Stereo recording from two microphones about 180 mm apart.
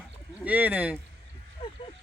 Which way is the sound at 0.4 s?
10° right (ahead or behind).